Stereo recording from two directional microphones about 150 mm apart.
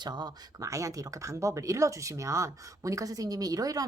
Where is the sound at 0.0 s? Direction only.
30° right (ahead or behind).